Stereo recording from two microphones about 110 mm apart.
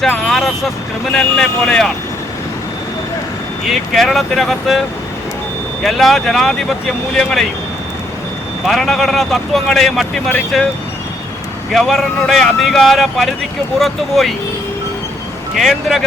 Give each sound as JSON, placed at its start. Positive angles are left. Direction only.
{"t": 0.1, "sound": "speech", "side_deg": 5}
{"t": 3.7, "sound": "speech", "side_deg": 0}
{"t": 5.8, "sound": "speech", "side_deg": 0}
{"t": 8.6, "sound": "speech", "side_deg": 0}
{"t": 11.7, "sound": "speech", "side_deg": 0}
{"t": 15.5, "sound": "speech", "side_deg": 0}